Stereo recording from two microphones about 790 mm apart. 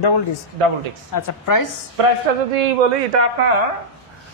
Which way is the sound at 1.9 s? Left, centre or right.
Right.